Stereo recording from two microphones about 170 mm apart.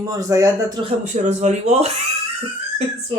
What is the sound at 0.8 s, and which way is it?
Speech, 40° right (ahead or behind).